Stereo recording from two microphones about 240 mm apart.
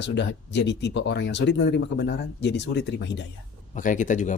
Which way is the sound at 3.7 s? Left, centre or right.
Left.